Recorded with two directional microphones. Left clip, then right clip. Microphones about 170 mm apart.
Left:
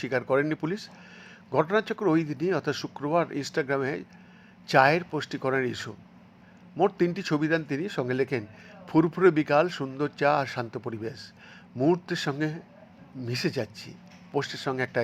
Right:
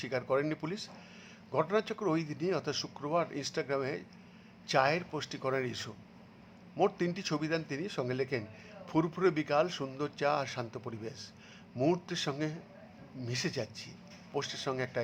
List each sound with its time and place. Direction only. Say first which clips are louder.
0.0 s speech: left 7 dB; 20° left (ahead or behind)